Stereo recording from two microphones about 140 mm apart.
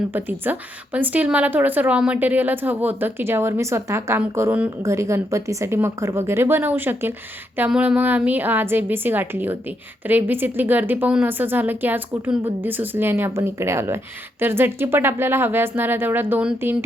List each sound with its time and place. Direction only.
0.1 s a woman's voice: 15° right (ahead or behind)